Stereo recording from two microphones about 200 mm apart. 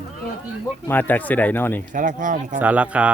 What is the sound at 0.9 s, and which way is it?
Speech, 10° left (ahead or behind).